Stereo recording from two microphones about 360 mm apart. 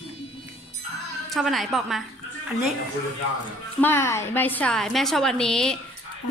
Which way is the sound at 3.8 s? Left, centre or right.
Centre.